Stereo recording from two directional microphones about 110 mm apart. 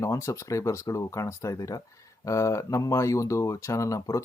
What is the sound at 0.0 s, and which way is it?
Speech, 30° left (ahead or behind).